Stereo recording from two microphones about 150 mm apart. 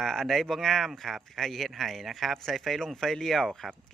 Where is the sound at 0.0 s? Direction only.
Centre (ahead or behind).